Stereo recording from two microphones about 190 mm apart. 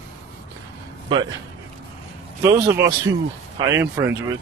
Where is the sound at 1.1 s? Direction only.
25° right (ahead or behind).